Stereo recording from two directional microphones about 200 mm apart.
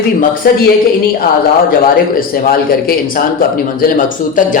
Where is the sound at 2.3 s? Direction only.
45° left (ahead or behind).